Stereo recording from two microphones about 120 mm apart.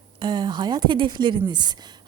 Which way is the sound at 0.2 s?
35° right (ahead or behind).